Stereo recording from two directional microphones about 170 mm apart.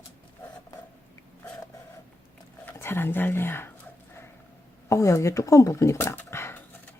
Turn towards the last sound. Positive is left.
turn(degrees=10)  # may be behind; listen again after turning